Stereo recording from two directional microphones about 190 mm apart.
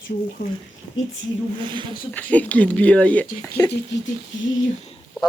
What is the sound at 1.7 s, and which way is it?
Speech, 25° right (ahead or behind).